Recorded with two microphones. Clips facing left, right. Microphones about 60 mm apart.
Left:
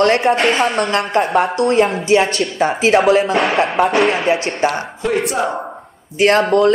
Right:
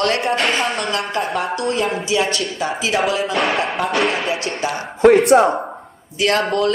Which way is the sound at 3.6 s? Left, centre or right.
Left.